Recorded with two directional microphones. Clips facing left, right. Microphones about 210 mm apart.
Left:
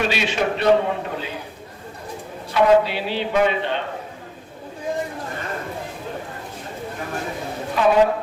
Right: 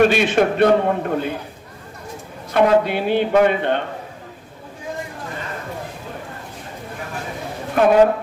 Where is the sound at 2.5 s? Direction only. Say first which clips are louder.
Right 1 dB; 55° right (ahead or behind).